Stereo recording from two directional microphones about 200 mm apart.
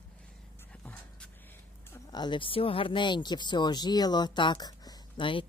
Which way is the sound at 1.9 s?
20° left (ahead or behind).